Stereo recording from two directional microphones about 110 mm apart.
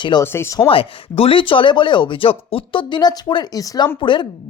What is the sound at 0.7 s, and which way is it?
Speech, 60° left (ahead or behind).